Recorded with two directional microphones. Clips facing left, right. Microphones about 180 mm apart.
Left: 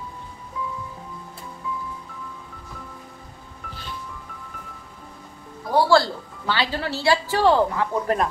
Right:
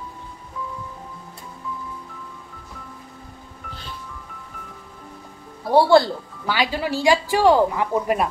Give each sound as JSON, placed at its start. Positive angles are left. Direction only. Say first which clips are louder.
{"t": 5.6, "sound": "speech", "louder": "right 3 dB", "side_deg": -30}
{"t": 6.4, "sound": "speech", "louder": "right 2 dB", "side_deg": -10}